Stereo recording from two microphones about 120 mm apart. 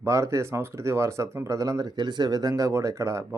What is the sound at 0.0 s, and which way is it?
Speech, 25° right (ahead or behind).